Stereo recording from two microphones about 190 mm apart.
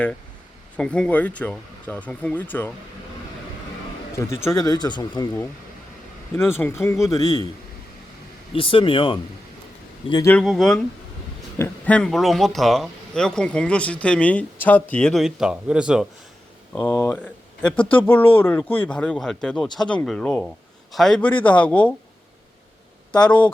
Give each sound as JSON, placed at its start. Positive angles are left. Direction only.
{"t": 0.8, "sound": "speech", "side_deg": 5}
{"t": 4.1, "sound": "speech", "side_deg": 15}
{"t": 8.5, "sound": "speech", "side_deg": 30}
{"t": 10.3, "sound": "a man's voice", "side_deg": 0}
{"t": 16.7, "sound": "a man's voice", "side_deg": 15}